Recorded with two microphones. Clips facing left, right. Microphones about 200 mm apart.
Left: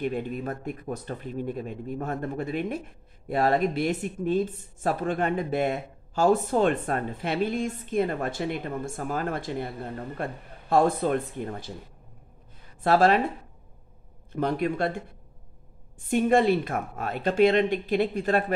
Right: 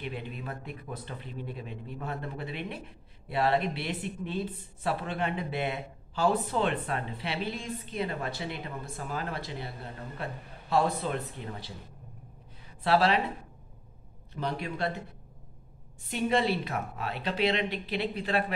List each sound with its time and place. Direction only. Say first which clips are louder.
0.0 s speech: left 9 dB; 45° left (ahead or behind)
12.8 s speech: left 5 dB; 45° left (ahead or behind)
14.3 s speech: left 8 dB; 50° left (ahead or behind)